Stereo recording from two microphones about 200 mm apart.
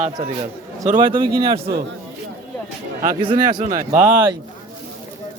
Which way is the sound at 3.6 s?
40° right (ahead or behind).